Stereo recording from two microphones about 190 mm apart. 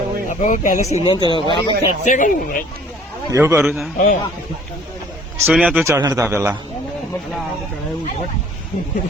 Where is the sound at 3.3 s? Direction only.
15° right (ahead or behind).